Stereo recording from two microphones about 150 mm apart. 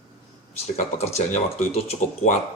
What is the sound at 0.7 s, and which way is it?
Speech, 45° left (ahead or behind).